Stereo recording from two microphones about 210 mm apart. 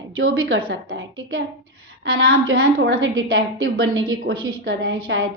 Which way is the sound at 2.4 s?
70° right (ahead or behind).